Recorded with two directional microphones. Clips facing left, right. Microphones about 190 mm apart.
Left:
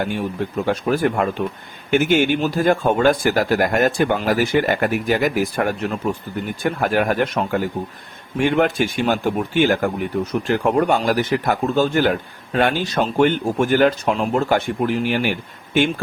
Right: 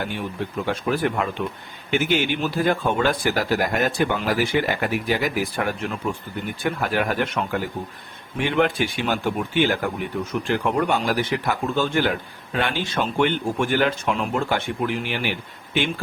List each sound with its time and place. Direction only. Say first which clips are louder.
0.0 s speech: left 5 dB; 45° left (ahead or behind)